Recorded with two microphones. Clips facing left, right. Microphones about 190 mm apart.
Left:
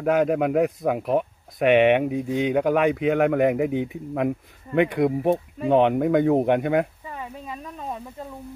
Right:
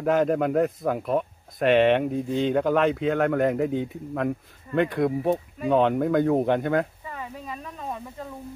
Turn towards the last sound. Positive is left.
turn(degrees=10)  # may be behind; listen again after turning